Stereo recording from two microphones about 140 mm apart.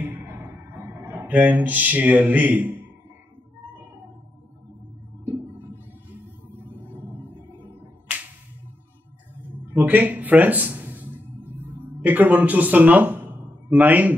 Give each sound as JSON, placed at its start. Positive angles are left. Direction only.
{"t": 0.2, "sound": "a sound", "side_deg": -15}
{"t": 5.2, "sound": "music", "side_deg": -15}
{"t": 7.6, "sound": "music", "side_deg": -40}
{"t": 9.7, "sound": "speech", "side_deg": -10}
{"t": 12.0, "sound": "speech", "side_deg": -10}